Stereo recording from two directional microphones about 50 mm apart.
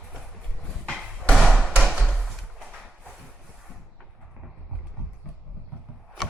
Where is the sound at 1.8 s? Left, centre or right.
Centre.